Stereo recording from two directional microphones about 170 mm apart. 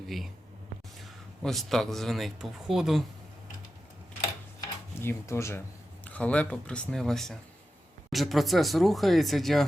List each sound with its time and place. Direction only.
0.9 s speech: centre (ahead or behind)
4.9 s speech: 15° left (ahead or behind)